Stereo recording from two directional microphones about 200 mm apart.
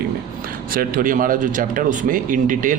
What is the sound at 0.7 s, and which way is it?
Speech, 45° right (ahead or behind).